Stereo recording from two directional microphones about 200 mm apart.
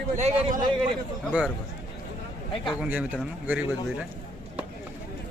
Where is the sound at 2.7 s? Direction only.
5° right (ahead or behind).